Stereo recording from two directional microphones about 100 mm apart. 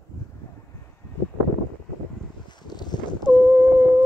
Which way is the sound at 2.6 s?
45° left (ahead or behind).